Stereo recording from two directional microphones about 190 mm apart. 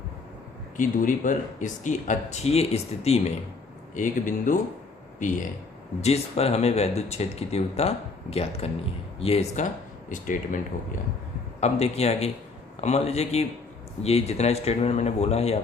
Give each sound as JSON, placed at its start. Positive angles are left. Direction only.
{"t": 0.8, "sound": "speech", "side_deg": 45}
{"t": 10.1, "sound": "speech", "side_deg": 45}
{"t": 11.6, "sound": "speech", "side_deg": 35}